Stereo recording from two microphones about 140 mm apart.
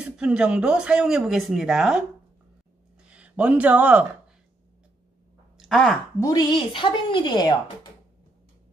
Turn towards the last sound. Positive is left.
turn(degrees=30)  # may be behind; listen again after turning